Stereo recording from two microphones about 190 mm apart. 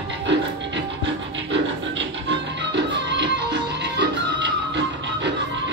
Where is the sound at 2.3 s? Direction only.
65° right (ahead or behind).